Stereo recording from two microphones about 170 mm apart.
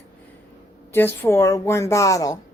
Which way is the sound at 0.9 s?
15° left (ahead or behind).